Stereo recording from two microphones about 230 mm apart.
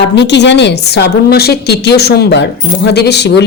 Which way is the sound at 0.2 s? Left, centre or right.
Left.